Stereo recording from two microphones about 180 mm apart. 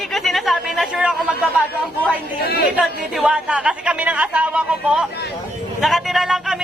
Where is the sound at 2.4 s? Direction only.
60° left (ahead or behind).